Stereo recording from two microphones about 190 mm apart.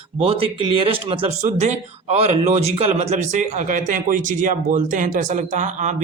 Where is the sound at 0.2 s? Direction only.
30° right (ahead or behind).